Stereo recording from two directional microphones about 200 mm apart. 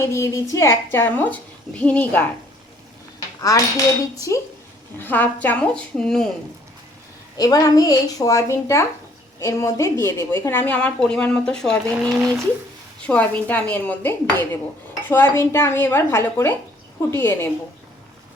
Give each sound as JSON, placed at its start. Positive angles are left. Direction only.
{"t": 0.0, "sound": "a woman's voice", "side_deg": 15}
{"t": 3.4, "sound": "a woman's voice", "side_deg": 15}
{"t": 7.3, "sound": "a woman's voice", "side_deg": 20}
{"t": 13.1, "sound": "a woman's voice", "side_deg": 5}